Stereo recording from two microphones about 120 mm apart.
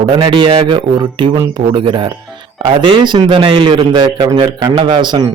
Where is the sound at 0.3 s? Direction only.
45° right (ahead or behind).